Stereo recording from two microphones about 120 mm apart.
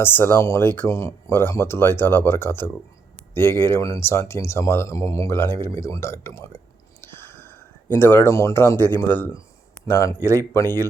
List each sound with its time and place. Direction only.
0.0 s speech: 20° left (ahead or behind)